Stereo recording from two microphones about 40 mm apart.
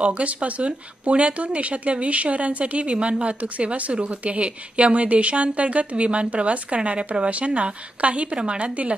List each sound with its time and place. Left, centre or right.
0.0 s speech: right